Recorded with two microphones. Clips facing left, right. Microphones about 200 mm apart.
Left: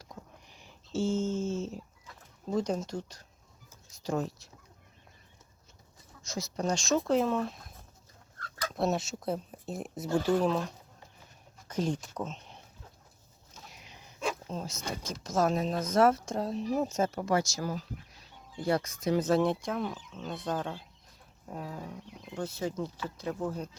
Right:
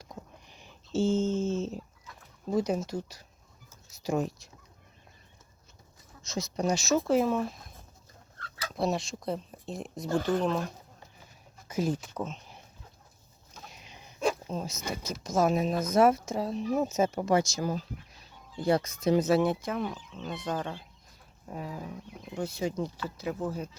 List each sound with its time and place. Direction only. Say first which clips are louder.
0.0 s a sound: right 3 dB; 20° right (ahead or behind)
2.5 s speech: right 2 dB; 10° right (ahead or behind)
6.2 s speech: right 3 dB; 20° right (ahead or behind); by 7.6 s 5° right (ahead or behind)
8.7 s speech: even; centre (ahead or behind)
11.7 s speech: right 2 dB; 5° right (ahead or behind)
13.7 s a sound: right 1 dB; 20° right (ahead or behind)
14.4 s speech: right 2 dB; 10° right (ahead or behind)
19.2 s speech: right 1 dB; 5° right (ahead or behind)